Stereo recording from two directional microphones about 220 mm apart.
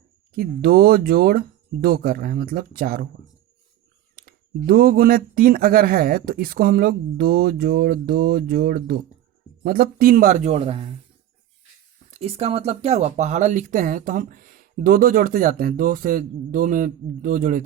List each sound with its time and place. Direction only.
0.3 s speech: 45° right (ahead or behind)
4.1 s speech: 40° right (ahead or behind)
12.1 s speech: 25° right (ahead or behind)